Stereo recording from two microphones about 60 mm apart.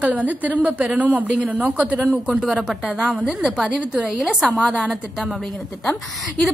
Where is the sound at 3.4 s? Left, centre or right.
Centre.